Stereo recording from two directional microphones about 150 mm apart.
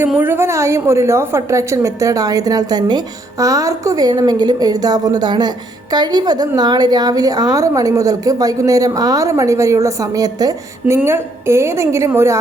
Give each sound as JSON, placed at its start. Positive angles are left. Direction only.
{"t": 0.0, "sound": "a woman's voice", "side_deg": -15}